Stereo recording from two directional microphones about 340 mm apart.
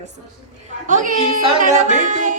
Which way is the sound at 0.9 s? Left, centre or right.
Right.